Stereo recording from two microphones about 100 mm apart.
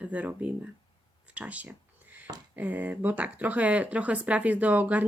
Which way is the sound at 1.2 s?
15° right (ahead or behind).